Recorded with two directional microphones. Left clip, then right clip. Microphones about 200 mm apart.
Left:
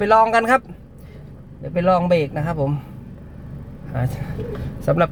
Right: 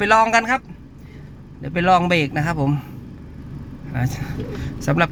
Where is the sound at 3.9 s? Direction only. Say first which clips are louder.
Even; 10° left (ahead or behind).